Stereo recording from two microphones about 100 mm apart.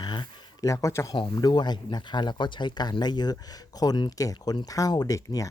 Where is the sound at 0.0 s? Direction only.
50° left (ahead or behind).